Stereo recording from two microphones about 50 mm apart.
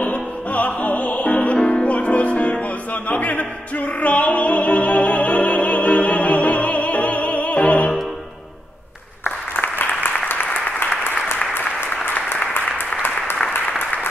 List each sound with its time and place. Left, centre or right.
0.0 s music: left
9.6 s applause: left
12.7 s applause: left